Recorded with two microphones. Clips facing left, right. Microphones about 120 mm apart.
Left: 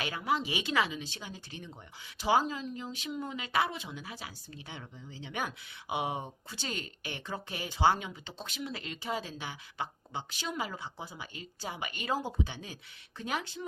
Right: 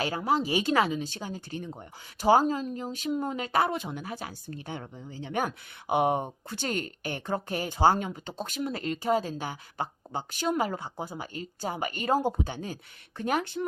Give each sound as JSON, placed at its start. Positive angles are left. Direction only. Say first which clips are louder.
{"t": 0.0, "sound": "speech", "louder": "right 5 dB", "side_deg": -35}